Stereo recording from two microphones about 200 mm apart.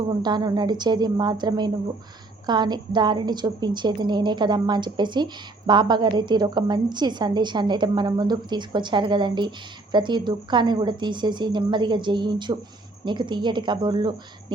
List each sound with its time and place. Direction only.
0.2 s a woman's voice: 20° right (ahead or behind)